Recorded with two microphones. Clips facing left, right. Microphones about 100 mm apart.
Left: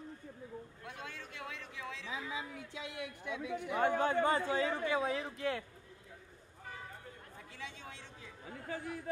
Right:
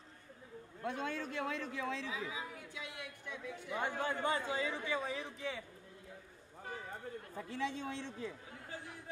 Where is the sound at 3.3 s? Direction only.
60° left (ahead or behind).